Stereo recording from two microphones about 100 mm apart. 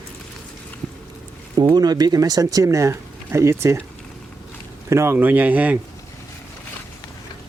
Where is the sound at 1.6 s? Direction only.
45° right (ahead or behind).